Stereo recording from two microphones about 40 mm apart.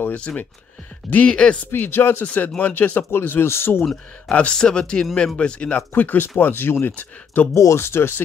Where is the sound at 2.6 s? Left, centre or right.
Left.